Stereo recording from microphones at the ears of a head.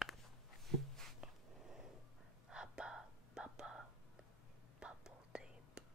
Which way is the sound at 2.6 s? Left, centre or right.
Centre.